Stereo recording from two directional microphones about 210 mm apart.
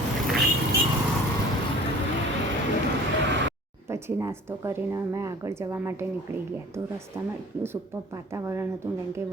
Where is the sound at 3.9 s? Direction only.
15° right (ahead or behind).